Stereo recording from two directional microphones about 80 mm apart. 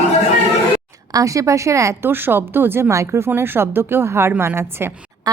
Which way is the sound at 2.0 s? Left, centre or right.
Right.